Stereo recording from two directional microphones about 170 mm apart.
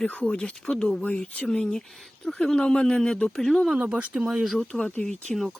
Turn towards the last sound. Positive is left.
turn(degrees=0)  # may be behind; listen again after turning